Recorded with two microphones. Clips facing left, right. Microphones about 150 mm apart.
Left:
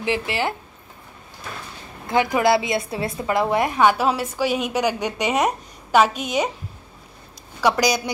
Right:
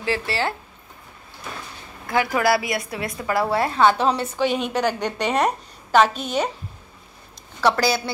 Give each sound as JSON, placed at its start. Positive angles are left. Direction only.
{"t": 0.0, "sound": "speech", "side_deg": 20}
{"t": 2.0, "sound": "a woman's voice", "side_deg": 20}
{"t": 7.6, "sound": "a woman's voice", "side_deg": 15}